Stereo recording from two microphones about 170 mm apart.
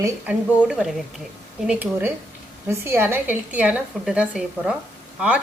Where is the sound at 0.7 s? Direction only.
5° right (ahead or behind).